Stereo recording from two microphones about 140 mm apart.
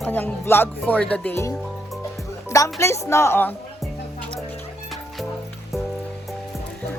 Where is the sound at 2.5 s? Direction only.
20° left (ahead or behind).